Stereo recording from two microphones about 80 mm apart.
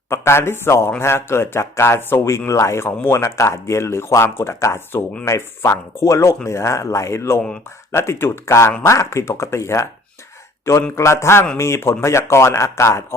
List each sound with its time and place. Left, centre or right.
0.1 s speech: left
10.9 s speech: left